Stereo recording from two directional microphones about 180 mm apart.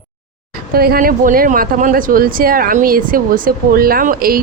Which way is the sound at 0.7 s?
55° right (ahead or behind).